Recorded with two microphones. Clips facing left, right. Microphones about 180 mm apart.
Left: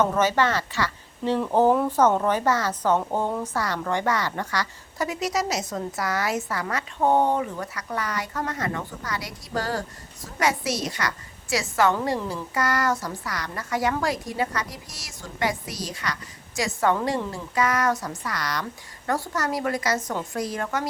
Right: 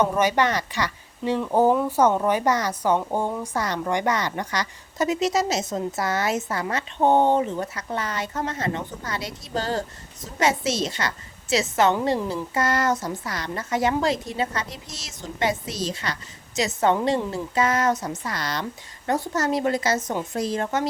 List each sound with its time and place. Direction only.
0.0 s a woman's voice: 15° right (ahead or behind)